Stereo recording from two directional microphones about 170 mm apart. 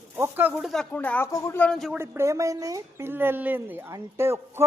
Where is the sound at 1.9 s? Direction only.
15° right (ahead or behind).